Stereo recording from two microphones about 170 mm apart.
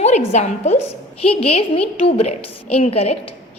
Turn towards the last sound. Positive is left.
turn(degrees=40)  # may be behind; listen again after turning